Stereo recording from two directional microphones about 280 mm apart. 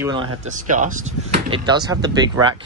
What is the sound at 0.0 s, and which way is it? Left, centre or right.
Speech, centre.